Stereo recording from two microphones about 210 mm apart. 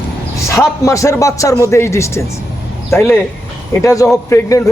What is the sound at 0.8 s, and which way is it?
A man's voice, 15° left (ahead or behind).